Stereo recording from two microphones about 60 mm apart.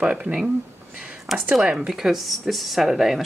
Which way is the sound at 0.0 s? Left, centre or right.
Centre.